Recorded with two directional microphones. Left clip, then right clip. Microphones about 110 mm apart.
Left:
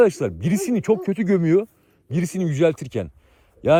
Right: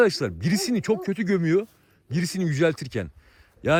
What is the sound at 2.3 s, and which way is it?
Speech, 70° right (ahead or behind).